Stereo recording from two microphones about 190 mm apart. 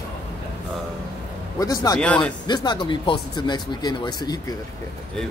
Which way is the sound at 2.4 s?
25° left (ahead or behind).